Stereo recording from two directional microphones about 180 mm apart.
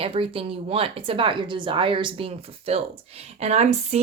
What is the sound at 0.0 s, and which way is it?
Speech, 30° right (ahead or behind).